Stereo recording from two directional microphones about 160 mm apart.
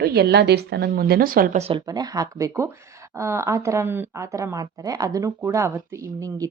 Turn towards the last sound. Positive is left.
turn(degrees=-20)  # may be behind; listen again after turning